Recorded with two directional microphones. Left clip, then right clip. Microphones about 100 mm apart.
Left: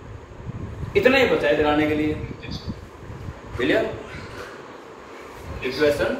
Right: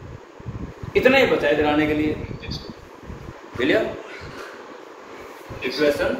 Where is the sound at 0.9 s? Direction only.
30° right (ahead or behind).